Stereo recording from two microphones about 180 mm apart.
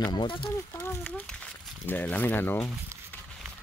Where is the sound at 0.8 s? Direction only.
10° left (ahead or behind).